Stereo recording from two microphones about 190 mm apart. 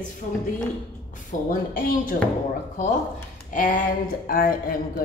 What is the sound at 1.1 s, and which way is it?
A woman's voice, 45° left (ahead or behind).